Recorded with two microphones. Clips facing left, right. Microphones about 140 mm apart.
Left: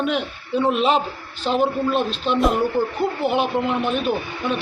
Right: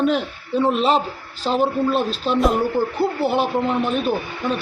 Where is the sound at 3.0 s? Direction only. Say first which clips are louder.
Right 2 dB; 35° right (ahead or behind).